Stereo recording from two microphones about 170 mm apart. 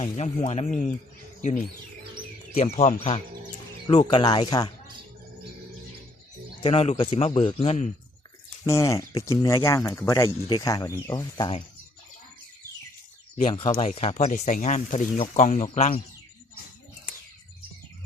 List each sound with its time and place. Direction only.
0.0 s speech: 35° left (ahead or behind)
2.7 s speech: 35° left (ahead or behind)
6.6 s speech: 35° left (ahead or behind)
8.6 s speech: 15° left (ahead or behind)
13.3 s speech: 35° left (ahead or behind)